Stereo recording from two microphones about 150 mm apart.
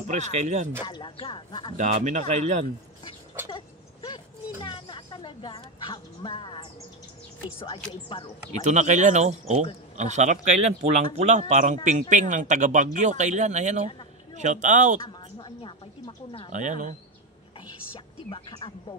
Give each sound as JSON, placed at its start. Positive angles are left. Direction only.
{"t": 0.1, "sound": "speech", "side_deg": -50}
{"t": 0.8, "sound": "speech", "side_deg": 30}
{"t": 1.8, "sound": "speech", "side_deg": -55}
{"t": 3.4, "sound": "a sound", "side_deg": 30}
{"t": 7.6, "sound": "speech", "side_deg": 35}
{"t": 8.6, "sound": "speech", "side_deg": -55}
{"t": 15.0, "sound": "a sound", "side_deg": 30}
{"t": 16.3, "sound": "speech", "side_deg": 35}
{"t": 16.5, "sound": "speech", "side_deg": -55}
{"t": 18.3, "sound": "speech", "side_deg": 35}